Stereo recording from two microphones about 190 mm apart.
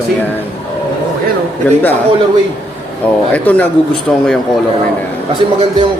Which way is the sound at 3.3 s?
10° left (ahead or behind).